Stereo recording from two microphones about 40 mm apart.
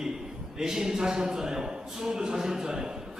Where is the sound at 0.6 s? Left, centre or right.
Centre.